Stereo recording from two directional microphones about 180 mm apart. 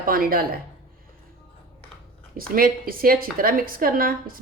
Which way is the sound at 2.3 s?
55° right (ahead or behind).